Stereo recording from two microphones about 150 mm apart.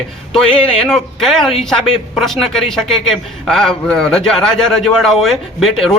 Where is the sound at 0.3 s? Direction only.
5° left (ahead or behind).